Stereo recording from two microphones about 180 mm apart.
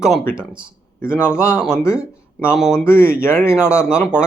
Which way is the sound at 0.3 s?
5° right (ahead or behind).